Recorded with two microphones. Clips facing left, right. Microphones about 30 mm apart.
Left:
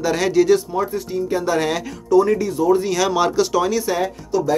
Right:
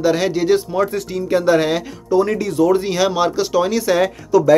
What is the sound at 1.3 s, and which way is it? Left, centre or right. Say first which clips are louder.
Speech: right 6 dB; right.